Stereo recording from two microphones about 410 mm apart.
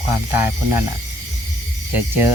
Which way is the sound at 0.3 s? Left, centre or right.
Right.